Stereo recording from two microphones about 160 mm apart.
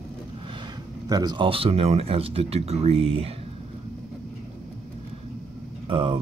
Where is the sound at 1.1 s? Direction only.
25° right (ahead or behind).